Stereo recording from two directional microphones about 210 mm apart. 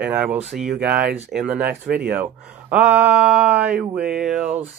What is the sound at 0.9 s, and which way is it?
Speech, 45° right (ahead or behind).